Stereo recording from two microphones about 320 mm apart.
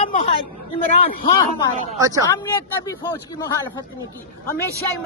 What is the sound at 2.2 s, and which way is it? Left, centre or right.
Speech, centre.